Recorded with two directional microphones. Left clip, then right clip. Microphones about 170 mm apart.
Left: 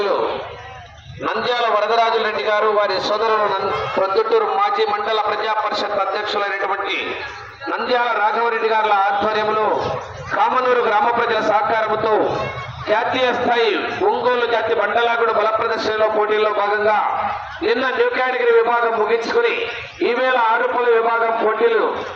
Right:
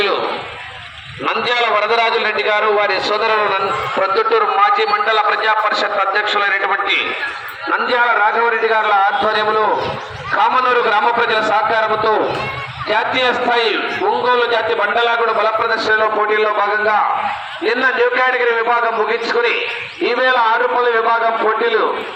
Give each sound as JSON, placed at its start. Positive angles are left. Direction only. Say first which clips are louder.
{"t": 1.2, "sound": "a man's voice", "louder": "right 3 dB", "side_deg": 25}